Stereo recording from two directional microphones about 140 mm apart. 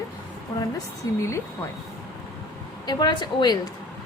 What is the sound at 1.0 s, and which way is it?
Speech, 25° left (ahead or behind).